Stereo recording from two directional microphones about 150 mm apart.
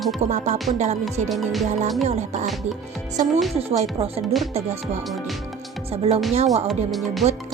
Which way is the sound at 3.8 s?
40° right (ahead or behind).